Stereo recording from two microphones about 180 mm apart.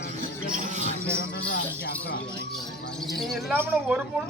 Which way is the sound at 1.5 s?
60° left (ahead or behind).